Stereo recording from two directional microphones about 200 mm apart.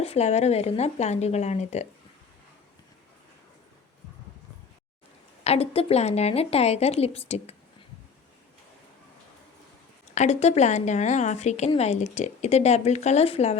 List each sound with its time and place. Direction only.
0.0 s speech: 30° left (ahead or behind)
5.4 s speech: 30° left (ahead or behind)
10.2 s speech: 35° left (ahead or behind)